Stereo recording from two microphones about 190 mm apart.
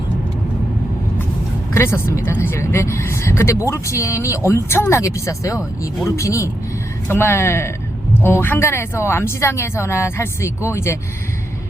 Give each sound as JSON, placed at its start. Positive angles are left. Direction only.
{"t": 1.7, "sound": "speech", "side_deg": 15}